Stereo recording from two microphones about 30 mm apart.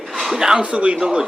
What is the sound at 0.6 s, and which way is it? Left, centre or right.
Speech, right.